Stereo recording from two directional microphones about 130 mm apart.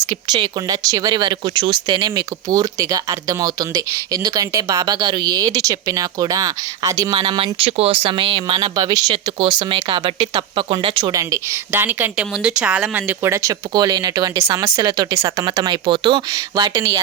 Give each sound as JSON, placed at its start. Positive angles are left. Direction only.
{"t": 0.0, "sound": "speech", "side_deg": -30}
{"t": 7.2, "sound": "speech", "side_deg": -45}
{"t": 11.2, "sound": "speech", "side_deg": -20}